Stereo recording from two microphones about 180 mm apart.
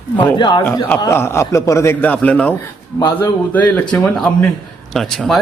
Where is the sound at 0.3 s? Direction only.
25° left (ahead or behind).